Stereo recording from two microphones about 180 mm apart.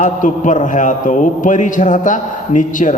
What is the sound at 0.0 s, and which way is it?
A man's voice, 45° left (ahead or behind).